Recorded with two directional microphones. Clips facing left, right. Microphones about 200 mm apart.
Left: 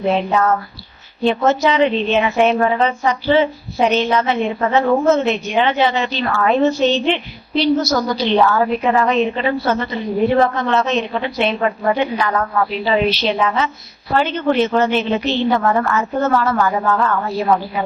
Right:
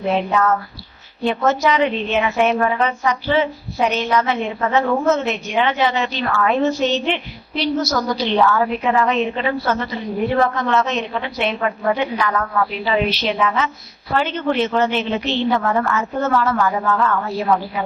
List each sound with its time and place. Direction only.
0.0 s a woman's voice: 30° left (ahead or behind)